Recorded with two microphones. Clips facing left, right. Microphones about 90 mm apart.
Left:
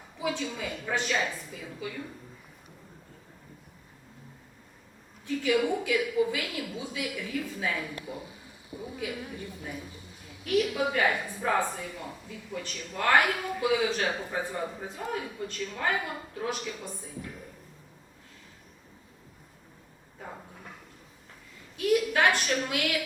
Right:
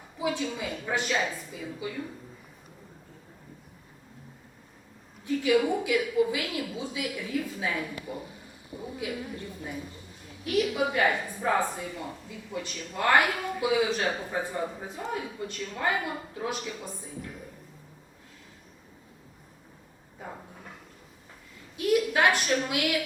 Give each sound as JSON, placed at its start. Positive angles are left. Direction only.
{"t": 0.2, "sound": "speech", "side_deg": -5}
{"t": 5.2, "sound": "speech", "side_deg": -5}
{"t": 8.7, "sound": "a woman's voice", "side_deg": -25}
{"t": 9.0, "sound": "speech", "side_deg": 0}
{"t": 20.1, "sound": "a sound", "side_deg": -5}
{"t": 21.8, "sound": "a woman's voice", "side_deg": -5}